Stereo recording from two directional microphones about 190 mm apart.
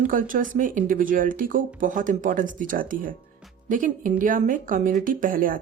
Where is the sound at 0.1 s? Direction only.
45° right (ahead or behind).